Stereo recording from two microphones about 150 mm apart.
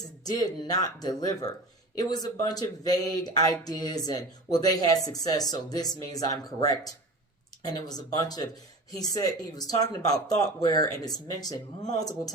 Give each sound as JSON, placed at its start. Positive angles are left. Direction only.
{"t": 0.3, "sound": "speech", "side_deg": 25}